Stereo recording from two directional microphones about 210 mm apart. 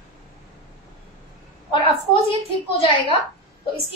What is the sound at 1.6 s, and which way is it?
A woman's voice, 25° left (ahead or behind).